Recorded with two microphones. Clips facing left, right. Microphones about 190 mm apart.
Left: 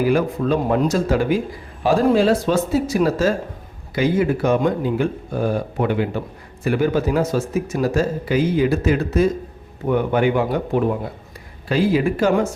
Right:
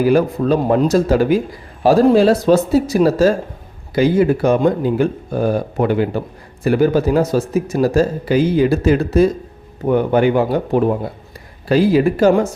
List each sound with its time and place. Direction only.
0.1 s speech: 35° right (ahead or behind)